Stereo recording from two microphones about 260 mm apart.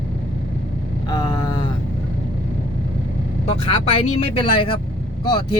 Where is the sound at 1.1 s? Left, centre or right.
Centre.